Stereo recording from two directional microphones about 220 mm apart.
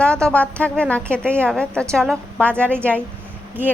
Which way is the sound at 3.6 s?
10° right (ahead or behind).